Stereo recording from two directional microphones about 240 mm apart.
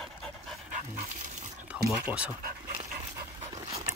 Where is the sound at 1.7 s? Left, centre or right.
Centre.